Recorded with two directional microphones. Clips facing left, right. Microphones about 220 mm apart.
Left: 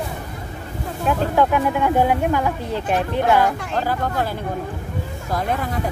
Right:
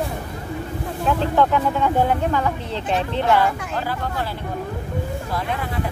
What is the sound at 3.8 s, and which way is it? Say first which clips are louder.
Speech: left 5 dB; 45° left (ahead or behind).